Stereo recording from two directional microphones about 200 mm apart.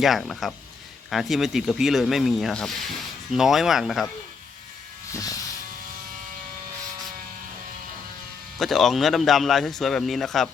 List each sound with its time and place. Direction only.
0.0 s a man's voice: centre (ahead or behind)
5.1 s vehicle: 15° left (ahead or behind)
8.5 s a man's voice: centre (ahead or behind)